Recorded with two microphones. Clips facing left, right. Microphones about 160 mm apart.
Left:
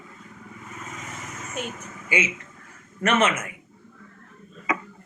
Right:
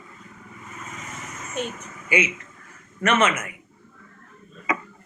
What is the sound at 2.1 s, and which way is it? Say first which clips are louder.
A man's voice: right 3 dB; 25° left (ahead or behind).